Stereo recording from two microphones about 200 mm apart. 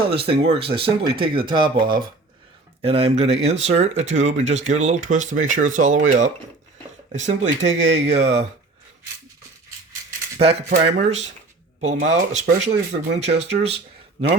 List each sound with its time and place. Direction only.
0.0 s speech: 25° right (ahead or behind)
10.7 s speech: 35° right (ahead or behind)